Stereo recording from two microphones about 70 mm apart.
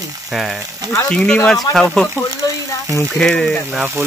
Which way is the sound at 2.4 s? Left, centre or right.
Left.